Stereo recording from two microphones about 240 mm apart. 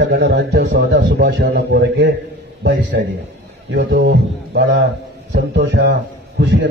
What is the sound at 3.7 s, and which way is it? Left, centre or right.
A man's voice, right.